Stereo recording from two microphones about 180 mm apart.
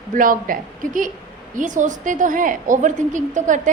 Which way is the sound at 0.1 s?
50° right (ahead or behind).